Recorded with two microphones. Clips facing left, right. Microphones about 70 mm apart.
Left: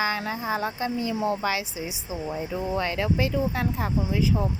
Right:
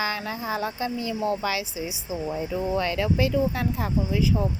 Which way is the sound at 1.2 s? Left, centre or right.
Left.